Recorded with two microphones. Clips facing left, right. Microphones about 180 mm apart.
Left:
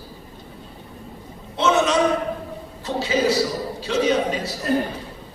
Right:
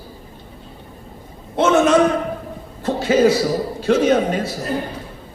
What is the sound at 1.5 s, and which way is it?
Speech, 50° right (ahead or behind).